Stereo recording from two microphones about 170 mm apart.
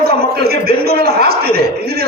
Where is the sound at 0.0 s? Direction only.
65° right (ahead or behind).